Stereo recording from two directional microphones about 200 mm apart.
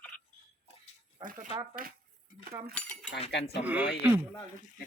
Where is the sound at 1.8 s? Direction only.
45° right (ahead or behind).